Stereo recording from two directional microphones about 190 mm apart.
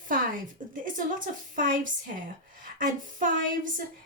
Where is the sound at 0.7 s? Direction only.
45° right (ahead or behind).